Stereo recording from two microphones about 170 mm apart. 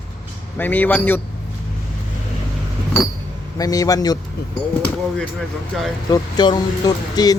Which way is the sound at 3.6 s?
20° left (ahead or behind).